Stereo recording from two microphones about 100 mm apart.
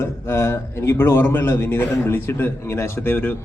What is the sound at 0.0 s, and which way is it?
A man's voice, 25° left (ahead or behind).